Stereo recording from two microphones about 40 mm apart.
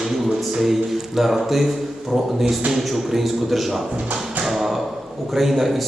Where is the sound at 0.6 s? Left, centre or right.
Centre.